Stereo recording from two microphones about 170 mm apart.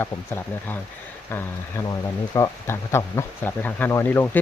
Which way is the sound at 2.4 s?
15° left (ahead or behind).